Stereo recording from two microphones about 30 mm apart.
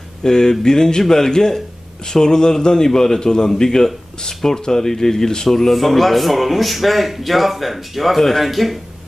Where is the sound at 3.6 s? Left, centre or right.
Centre.